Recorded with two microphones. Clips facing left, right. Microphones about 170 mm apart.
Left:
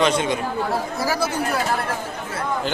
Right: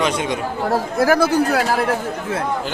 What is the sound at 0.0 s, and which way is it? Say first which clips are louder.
Speech: left 1 dB; 15° right (ahead or behind).